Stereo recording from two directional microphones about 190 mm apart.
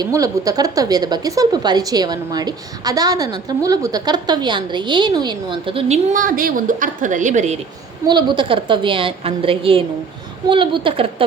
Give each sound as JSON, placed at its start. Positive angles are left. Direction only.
{"t": 0.0, "sound": "speech", "side_deg": -20}
{"t": 8.0, "sound": "speech", "side_deg": -25}